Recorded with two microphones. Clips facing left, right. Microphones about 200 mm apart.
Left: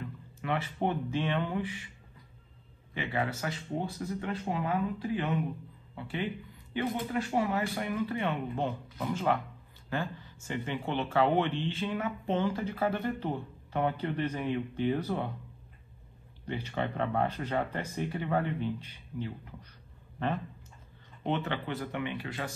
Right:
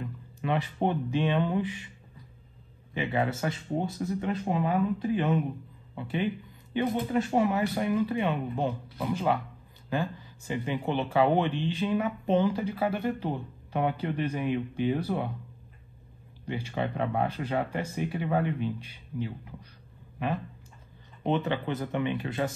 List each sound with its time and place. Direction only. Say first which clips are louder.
0.0 s speech: right 4 dB; 20° right (ahead or behind)
2.9 s speech: right 4 dB; 20° right (ahead or behind)
6.7 s speech: right 5 dB; 20° right (ahead or behind)
16.4 s speech: right 2 dB; 15° right (ahead or behind)
21.2 s speech: right 4 dB; 15° right (ahead or behind)